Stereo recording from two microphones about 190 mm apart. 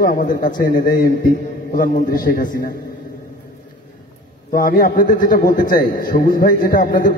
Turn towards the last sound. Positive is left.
turn(degrees=45)  # may be behind; listen again after turning